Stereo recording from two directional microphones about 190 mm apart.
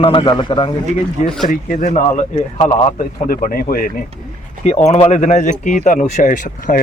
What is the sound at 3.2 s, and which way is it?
Speech, 50° left (ahead or behind).